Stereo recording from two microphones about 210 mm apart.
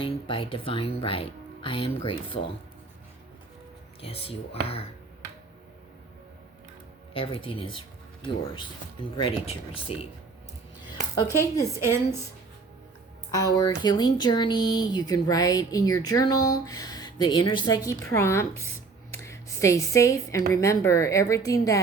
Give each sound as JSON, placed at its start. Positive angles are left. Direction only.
{"t": 0.0, "sound": "speech", "side_deg": 25}
{"t": 4.0, "sound": "speech", "side_deg": 25}
{"t": 7.1, "sound": "speech", "side_deg": 25}
{"t": 11.1, "sound": "speech", "side_deg": 15}
{"t": 11.7, "sound": "a woman's voice", "side_deg": -10}
{"t": 13.3, "sound": "speech", "side_deg": 20}